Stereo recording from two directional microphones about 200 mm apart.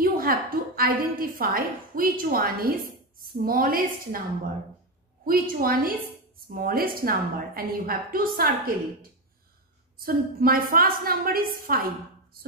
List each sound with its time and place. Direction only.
0.0 s a woman's voice: 45° right (ahead or behind)
5.2 s a woman's voice: 45° right (ahead or behind)
10.0 s a woman's voice: 45° right (ahead or behind)